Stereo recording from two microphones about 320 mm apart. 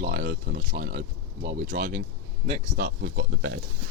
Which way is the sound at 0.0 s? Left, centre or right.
Right.